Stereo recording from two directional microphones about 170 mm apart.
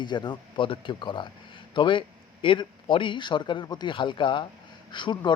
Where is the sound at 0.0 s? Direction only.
25° left (ahead or behind).